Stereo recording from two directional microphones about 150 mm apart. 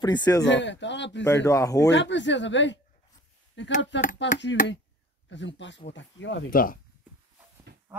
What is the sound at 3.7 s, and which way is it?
Speech, 60° left (ahead or behind).